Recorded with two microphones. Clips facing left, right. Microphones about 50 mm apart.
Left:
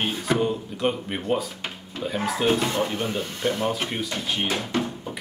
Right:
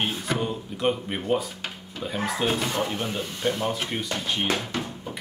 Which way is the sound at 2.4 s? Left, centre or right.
Centre.